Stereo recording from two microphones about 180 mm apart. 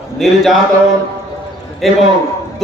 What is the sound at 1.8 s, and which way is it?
Speech, centre (ahead or behind).